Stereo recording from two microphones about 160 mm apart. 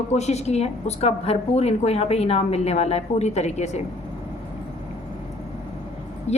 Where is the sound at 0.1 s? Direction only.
45° left (ahead or behind).